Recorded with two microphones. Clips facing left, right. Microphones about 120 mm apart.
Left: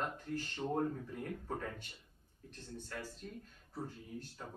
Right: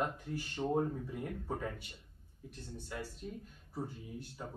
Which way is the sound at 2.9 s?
10° right (ahead or behind).